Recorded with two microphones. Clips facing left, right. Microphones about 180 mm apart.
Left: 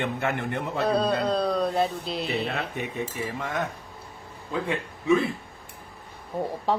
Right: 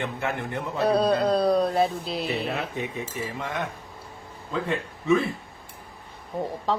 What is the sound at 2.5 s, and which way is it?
Cutlery, 60° left (ahead or behind).